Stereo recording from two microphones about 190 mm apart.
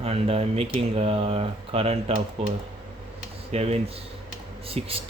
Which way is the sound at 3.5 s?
35° right (ahead or behind).